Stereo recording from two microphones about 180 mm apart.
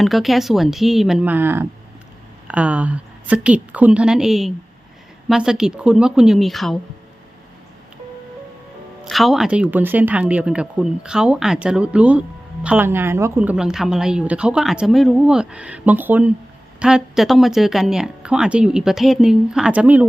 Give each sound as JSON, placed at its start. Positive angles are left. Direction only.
{"t": 0.0, "sound": "a woman's voice", "side_deg": 0}
{"t": 9.0, "sound": "a woman's voice", "side_deg": 0}